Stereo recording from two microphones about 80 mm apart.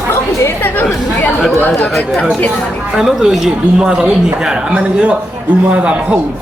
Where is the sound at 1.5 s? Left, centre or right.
Left.